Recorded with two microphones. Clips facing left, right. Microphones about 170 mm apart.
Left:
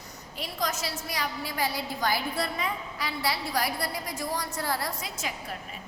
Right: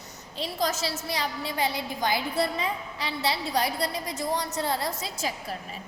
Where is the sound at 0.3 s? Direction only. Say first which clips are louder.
Right 4 dB; 25° right (ahead or behind).